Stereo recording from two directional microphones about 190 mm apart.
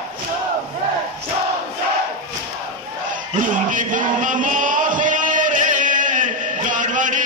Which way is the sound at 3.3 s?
45° right (ahead or behind).